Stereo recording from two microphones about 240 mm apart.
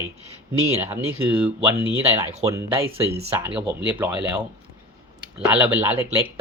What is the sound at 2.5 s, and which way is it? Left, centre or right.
Speech, centre.